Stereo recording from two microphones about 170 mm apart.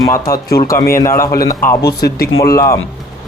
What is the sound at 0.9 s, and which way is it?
Speech, 15° left (ahead or behind).